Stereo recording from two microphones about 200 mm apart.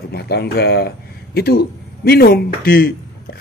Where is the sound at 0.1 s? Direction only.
55° left (ahead or behind).